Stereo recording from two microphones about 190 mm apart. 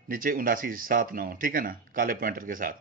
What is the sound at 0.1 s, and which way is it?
Speech, 45° right (ahead or behind).